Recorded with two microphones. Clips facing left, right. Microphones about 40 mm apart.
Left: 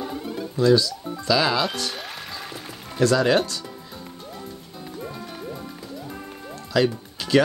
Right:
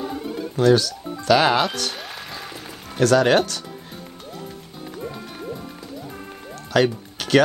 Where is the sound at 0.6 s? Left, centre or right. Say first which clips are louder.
Right 1 dB; right.